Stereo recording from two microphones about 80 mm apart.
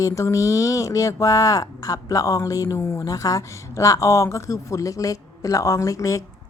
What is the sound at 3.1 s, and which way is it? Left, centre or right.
Speech, left.